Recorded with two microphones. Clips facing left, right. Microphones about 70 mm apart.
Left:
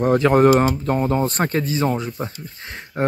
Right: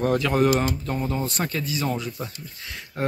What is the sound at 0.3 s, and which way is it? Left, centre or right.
Speech, left.